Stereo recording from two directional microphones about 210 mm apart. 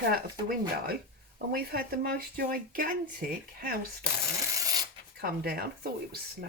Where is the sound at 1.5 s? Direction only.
45° right (ahead or behind).